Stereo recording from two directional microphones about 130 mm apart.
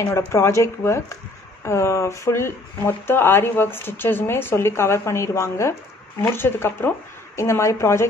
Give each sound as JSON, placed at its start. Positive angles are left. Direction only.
{"t": 0.3, "sound": "speech", "side_deg": 20}